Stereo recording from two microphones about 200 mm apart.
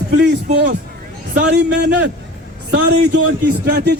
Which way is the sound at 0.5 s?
60° right (ahead or behind).